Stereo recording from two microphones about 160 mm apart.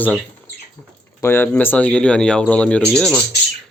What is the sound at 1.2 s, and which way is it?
Speech, 15° left (ahead or behind).